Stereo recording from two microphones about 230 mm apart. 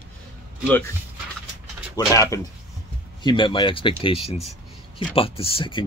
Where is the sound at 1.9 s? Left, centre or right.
Centre.